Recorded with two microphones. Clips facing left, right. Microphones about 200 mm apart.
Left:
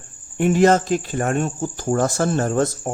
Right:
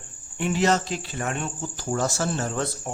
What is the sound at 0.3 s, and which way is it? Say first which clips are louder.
Speech: left 7 dB; 50° left (ahead or behind).